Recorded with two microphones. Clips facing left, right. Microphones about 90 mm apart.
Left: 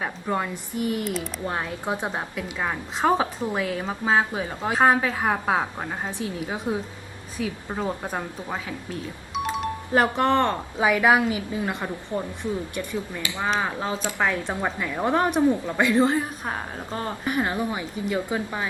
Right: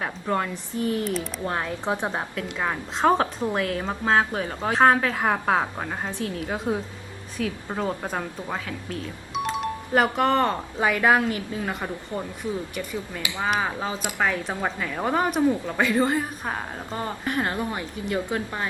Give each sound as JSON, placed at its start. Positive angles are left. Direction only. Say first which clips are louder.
{"t": 0.0, "sound": "a woman's voice", "louder": "right 1 dB", "side_deg": 10}
{"t": 1.0, "sound": "speech", "louder": "right 1 dB", "side_deg": 5}
{"t": 1.8, "sound": "a woman's voice", "louder": "right 1 dB", "side_deg": -20}
{"t": 2.1, "sound": "speech", "louder": "right 1 dB", "side_deg": 0}
{"t": 6.1, "sound": "a woman's voice", "louder": "right 1 dB", "side_deg": 10}
{"t": 13.4, "sound": "a woman's voice", "louder": "even", "side_deg": -5}